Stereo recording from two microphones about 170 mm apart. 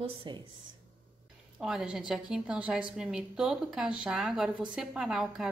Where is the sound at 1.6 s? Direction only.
Centre (ahead or behind).